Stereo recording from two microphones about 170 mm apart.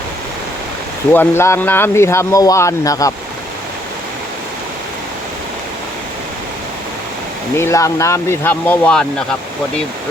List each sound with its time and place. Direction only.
1.1 s speech: 10° left (ahead or behind)
7.5 s speech: 15° left (ahead or behind)